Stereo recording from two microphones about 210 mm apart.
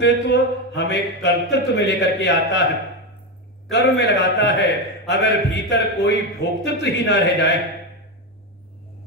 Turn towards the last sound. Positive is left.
turn(degrees=55)  # may be behind; listen again after turning